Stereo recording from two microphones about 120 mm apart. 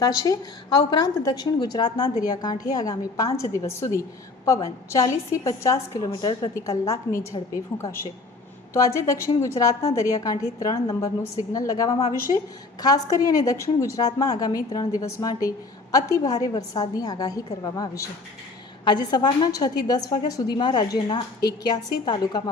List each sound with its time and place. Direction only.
0.0 s a woman's voice: 30° left (ahead or behind)
12.3 s a woman's voice: 55° left (ahead or behind)
12.8 s a woman's voice: 30° left (ahead or behind)
18.9 s a woman's voice: 35° left (ahead or behind)